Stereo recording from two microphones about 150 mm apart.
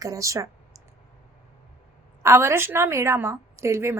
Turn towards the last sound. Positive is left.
turn(degrees=-20)  # may be behind; listen again after turning